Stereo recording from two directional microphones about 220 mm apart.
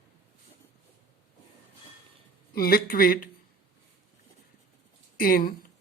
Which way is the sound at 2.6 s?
45° left (ahead or behind).